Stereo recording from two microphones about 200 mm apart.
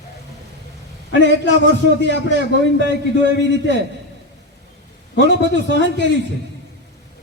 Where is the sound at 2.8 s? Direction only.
60° left (ahead or behind).